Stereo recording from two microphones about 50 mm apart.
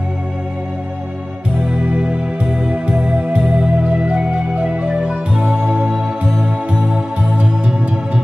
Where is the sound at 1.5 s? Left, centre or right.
Right.